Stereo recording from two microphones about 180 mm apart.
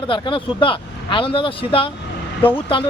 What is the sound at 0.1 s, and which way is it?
Speech, 25° left (ahead or behind).